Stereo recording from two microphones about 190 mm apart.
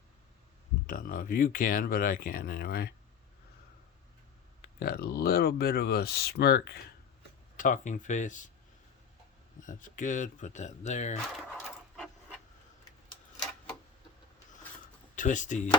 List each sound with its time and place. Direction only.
0.9 s speech: 50° left (ahead or behind)
4.8 s speech: 55° left (ahead or behind)
7.5 s speech: 45° left (ahead or behind)
9.6 s speech: 45° left (ahead or behind)
15.1 s speech: 40° left (ahead or behind)